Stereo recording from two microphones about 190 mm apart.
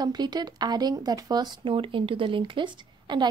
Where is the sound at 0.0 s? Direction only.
20° right (ahead or behind).